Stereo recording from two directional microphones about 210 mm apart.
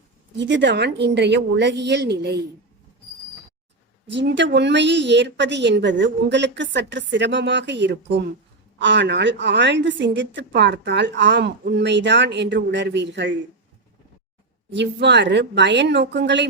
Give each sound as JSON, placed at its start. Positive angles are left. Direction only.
{"t": 0.3, "sound": "a woman's voice", "side_deg": -60}
{"t": 4.1, "sound": "a woman's voice", "side_deg": -55}
{"t": 14.7, "sound": "a woman's voice", "side_deg": -55}